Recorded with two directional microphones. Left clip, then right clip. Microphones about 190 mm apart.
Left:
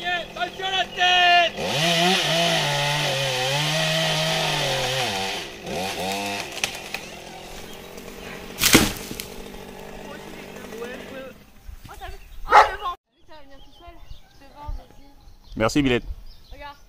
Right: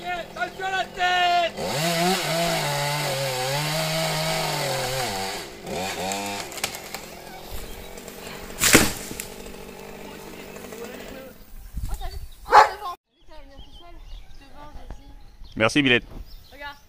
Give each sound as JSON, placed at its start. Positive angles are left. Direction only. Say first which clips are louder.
{"t": 0.0, "sound": "vehicle", "louder": "left 3 dB", "side_deg": 5}
{"t": 8.5, "sound": "a sound", "louder": "even", "side_deg": 50}
{"t": 9.2, "sound": "chainsaw", "louder": "left 1 dB", "side_deg": 40}
{"t": 15.5, "sound": "speech", "louder": "right 2 dB", "side_deg": 10}